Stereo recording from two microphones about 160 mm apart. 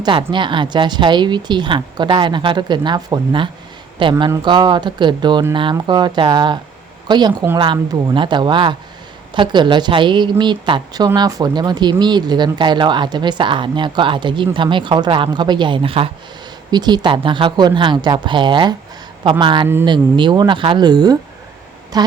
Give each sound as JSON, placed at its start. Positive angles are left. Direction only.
{"t": 0.0, "sound": "a woman's voice", "side_deg": -30}